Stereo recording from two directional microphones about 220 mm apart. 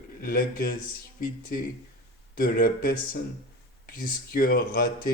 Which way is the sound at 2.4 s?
40° left (ahead or behind).